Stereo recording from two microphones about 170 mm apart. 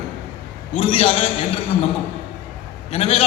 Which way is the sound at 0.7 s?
35° left (ahead or behind).